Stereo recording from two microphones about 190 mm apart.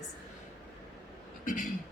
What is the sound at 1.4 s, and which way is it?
Speech, 45° left (ahead or behind).